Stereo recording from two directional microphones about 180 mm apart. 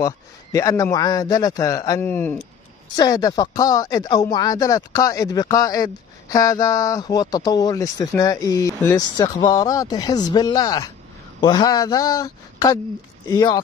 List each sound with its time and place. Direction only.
0.0 s speech: 20° left (ahead or behind)